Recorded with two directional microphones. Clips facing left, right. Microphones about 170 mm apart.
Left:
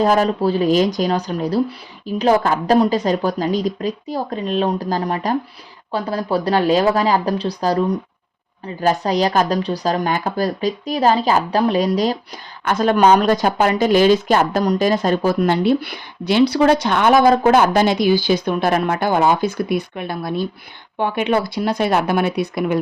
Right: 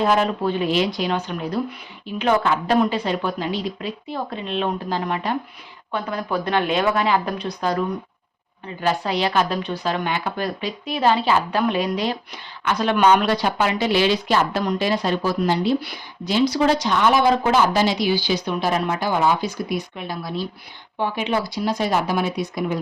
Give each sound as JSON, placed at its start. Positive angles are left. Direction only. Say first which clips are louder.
{"t": 0.0, "sound": "speech", "louder": "left 4 dB", "side_deg": 40}